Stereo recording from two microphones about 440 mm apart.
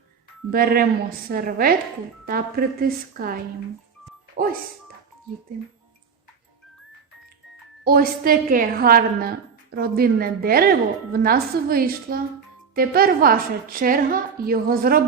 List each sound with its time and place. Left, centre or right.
0.5 s a woman's voice: centre
7.9 s a woman's voice: centre